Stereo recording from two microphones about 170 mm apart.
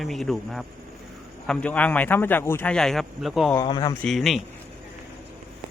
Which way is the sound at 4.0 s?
Centre (ahead or behind).